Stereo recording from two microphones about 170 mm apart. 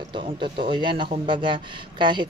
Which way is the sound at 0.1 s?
30° right (ahead or behind).